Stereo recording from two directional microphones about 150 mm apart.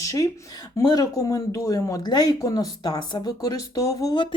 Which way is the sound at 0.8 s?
25° left (ahead or behind).